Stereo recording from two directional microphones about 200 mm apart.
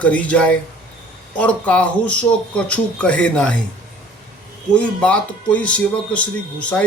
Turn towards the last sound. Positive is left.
turn(degrees=5)  # may be behind; listen again after turning